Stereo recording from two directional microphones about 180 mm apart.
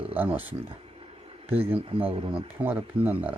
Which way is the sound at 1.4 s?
35° right (ahead or behind).